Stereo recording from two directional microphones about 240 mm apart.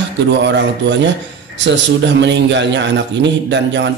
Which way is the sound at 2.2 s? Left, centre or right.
Right.